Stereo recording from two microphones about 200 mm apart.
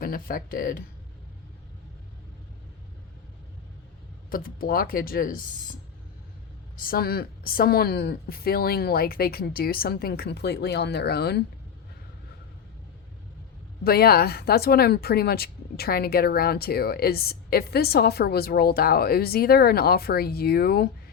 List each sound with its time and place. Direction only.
0.0 s speech: 45° left (ahead or behind)
4.3 s speech: 45° left (ahead or behind)
6.8 s speech: 50° left (ahead or behind)
13.8 s speech: 50° left (ahead or behind)